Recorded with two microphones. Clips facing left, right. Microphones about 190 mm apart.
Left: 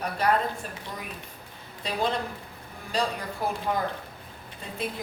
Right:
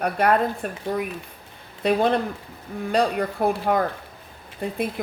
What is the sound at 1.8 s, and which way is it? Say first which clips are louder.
A woman's voice: right 8 dB; 60° right (ahead or behind).